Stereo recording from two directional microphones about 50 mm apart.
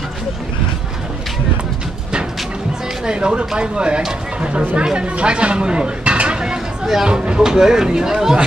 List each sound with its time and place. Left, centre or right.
3.1 s speech: centre